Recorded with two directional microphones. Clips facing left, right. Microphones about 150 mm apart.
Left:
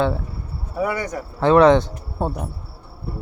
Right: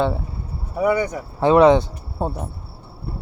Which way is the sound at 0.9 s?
10° right (ahead or behind).